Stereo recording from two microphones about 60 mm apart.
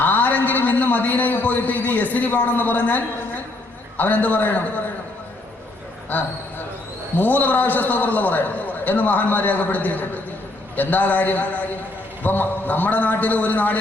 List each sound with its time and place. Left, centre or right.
0.0 s a man's voice: left
7.2 s a man's voice: left